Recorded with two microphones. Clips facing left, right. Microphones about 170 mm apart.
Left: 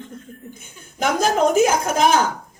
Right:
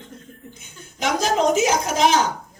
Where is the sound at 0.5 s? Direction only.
55° left (ahead or behind).